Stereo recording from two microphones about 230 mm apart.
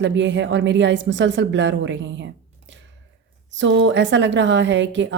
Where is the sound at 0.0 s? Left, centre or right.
Right.